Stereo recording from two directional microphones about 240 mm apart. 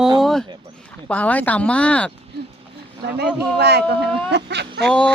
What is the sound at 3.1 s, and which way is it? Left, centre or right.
Speech, right.